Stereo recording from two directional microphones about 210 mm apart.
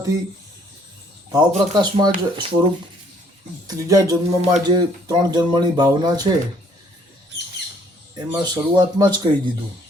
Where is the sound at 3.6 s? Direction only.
20° right (ahead or behind).